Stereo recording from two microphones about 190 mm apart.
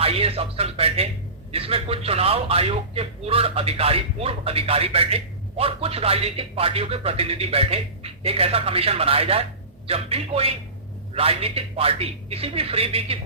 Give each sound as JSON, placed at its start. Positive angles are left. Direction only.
{"t": 0.0, "sound": "a man's voice", "side_deg": -30}